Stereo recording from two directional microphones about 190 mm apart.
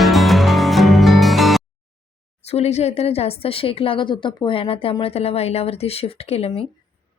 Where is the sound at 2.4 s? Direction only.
35° left (ahead or behind).